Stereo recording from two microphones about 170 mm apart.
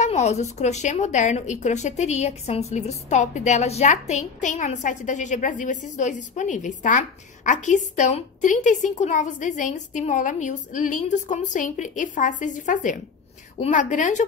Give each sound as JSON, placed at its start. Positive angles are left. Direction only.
{"t": 0.0, "sound": "a woman's voice", "side_deg": 40}